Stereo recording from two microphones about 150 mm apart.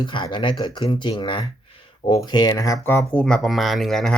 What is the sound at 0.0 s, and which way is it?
Speech, 30° left (ahead or behind).